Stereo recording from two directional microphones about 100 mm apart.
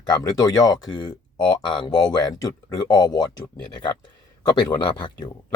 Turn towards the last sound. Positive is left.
turn(degrees=45)  # may be behind; listen again after turning